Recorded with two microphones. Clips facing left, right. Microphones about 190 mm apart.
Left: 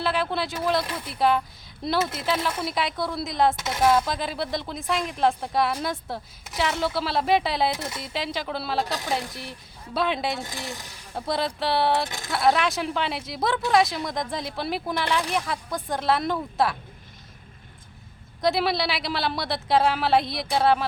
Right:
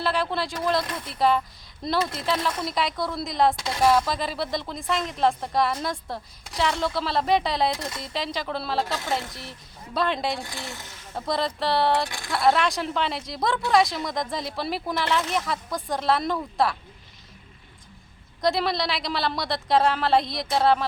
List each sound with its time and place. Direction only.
0.0 s speech: centre (ahead or behind)
10.4 s speech: 20° left (ahead or behind)
11.1 s speech: centre (ahead or behind)
12.0 s speech: 20° left (ahead or behind)
12.3 s speech: centre (ahead or behind)
18.4 s speech: 5° left (ahead or behind)